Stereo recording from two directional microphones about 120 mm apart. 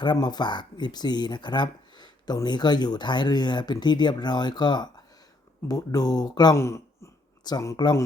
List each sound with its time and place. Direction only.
0.0 s speech: 40° left (ahead or behind)
6.6 s speech: 25° left (ahead or behind)